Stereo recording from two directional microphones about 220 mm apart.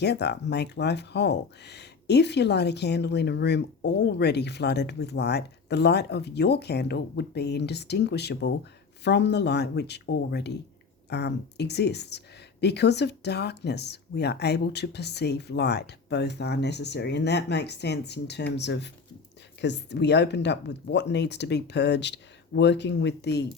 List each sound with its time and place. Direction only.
0.0 s speech: 50° left (ahead or behind)